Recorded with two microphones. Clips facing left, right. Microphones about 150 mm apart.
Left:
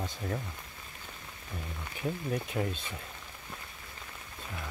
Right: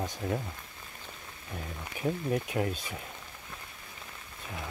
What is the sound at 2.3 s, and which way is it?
Speech, 5° right (ahead or behind).